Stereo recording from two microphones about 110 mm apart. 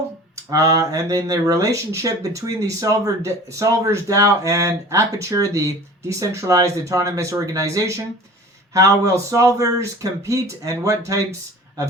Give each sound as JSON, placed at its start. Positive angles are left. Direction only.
{"t": 0.5, "sound": "speech", "side_deg": -30}